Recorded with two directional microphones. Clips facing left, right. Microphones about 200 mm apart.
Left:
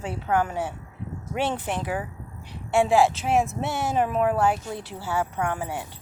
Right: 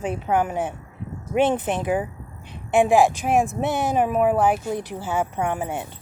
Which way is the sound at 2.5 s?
20° right (ahead or behind).